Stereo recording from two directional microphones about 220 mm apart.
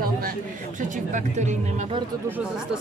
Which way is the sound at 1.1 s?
30° right (ahead or behind).